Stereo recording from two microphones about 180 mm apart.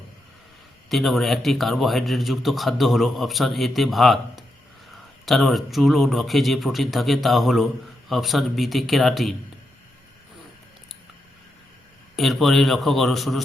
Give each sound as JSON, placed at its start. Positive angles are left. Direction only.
{"t": 0.9, "sound": "a man's voice", "side_deg": 0}
{"t": 12.1, "sound": "a man's voice", "side_deg": 0}